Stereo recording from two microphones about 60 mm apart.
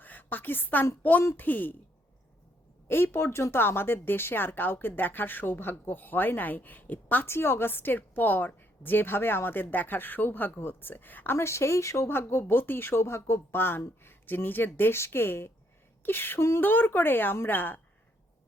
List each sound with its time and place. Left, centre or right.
0.0 s a woman's voice: left
2.9 s a woman's voice: left
7.3 s a woman's voice: left
11.3 s speech: left
12.0 s a woman's voice: left
13.5 s a woman's voice: left